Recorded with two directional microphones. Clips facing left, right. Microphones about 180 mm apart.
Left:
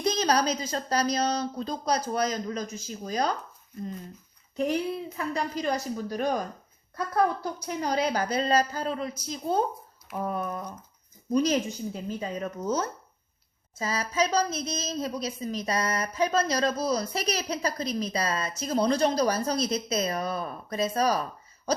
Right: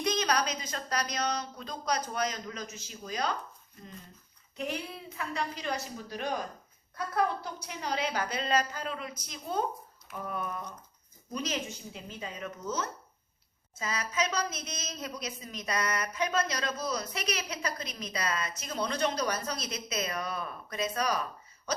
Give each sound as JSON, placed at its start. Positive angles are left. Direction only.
{"t": 0.0, "sound": "a woman's voice", "side_deg": 30}
{"t": 4.5, "sound": "a woman's voice", "side_deg": 35}
{"t": 7.4, "sound": "a woman's voice", "side_deg": 40}